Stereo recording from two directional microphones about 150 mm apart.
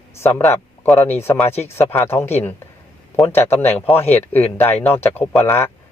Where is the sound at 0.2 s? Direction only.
15° left (ahead or behind).